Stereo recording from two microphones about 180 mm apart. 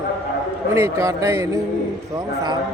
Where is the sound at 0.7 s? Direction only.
15° right (ahead or behind).